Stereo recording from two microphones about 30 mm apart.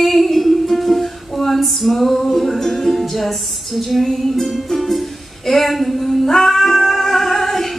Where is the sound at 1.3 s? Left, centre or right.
Centre.